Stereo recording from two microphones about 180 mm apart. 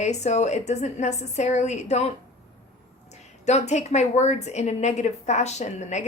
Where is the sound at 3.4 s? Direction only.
40° left (ahead or behind).